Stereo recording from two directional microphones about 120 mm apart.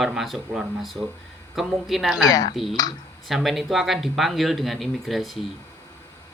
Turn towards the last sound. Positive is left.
turn(degrees=0)  # may be behind; listen again after turning